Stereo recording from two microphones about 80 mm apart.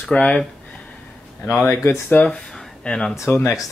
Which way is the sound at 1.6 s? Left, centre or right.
Left.